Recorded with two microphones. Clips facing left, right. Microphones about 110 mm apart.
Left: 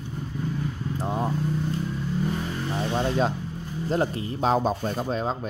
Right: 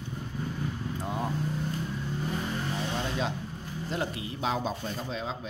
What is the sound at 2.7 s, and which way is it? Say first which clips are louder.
A man's voice: left 10 dB; 45° left (ahead or behind).